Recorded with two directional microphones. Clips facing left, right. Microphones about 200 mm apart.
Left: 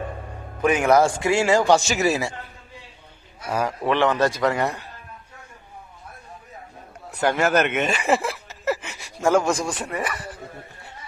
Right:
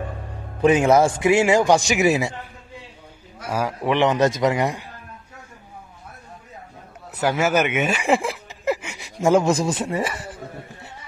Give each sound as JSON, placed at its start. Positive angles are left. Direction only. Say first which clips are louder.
{"t": 0.6, "sound": "a man's voice", "louder": "right 2 dB", "side_deg": -25}
{"t": 3.4, "sound": "a man's voice", "louder": "even", "side_deg": -5}
{"t": 7.1, "sound": "speech", "louder": "even", "side_deg": -5}